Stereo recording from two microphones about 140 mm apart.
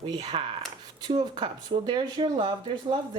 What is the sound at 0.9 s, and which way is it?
Speech, 30° right (ahead or behind).